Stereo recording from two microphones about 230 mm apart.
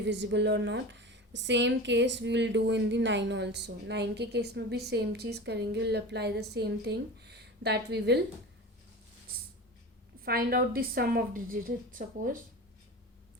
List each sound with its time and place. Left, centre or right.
0.0 s a woman's voice: right
10.2 s a woman's voice: right